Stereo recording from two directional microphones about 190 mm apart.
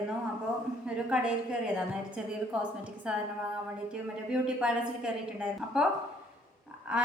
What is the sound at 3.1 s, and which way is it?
Speech, 5° right (ahead or behind).